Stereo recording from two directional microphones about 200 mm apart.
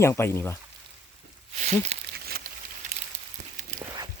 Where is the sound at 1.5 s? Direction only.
35° right (ahead or behind).